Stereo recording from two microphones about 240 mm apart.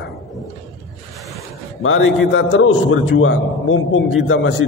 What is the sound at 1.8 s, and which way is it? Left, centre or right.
A man's voice, left.